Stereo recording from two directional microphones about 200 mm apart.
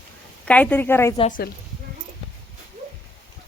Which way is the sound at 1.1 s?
35° left (ahead or behind).